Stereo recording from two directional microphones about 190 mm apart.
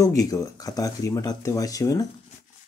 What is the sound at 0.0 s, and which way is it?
Speech, 20° left (ahead or behind).